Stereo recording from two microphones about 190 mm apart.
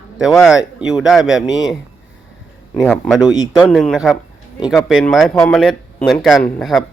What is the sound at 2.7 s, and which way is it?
Speech, 10° left (ahead or behind).